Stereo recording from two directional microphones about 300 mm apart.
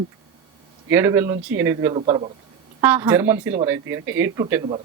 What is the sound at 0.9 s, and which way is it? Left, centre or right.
Speech, centre.